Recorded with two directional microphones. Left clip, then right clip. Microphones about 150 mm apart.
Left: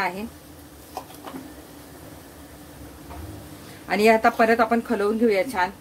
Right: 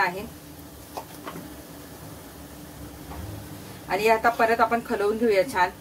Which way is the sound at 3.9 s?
65° left (ahead or behind).